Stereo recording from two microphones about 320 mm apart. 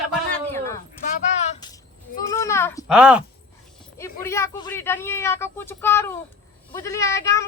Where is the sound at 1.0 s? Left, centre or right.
Left; by 3.2 s centre.